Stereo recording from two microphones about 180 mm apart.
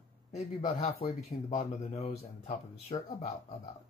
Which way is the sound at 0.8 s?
40° left (ahead or behind).